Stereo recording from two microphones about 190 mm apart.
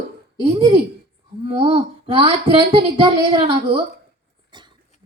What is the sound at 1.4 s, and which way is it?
Speech, 25° right (ahead or behind).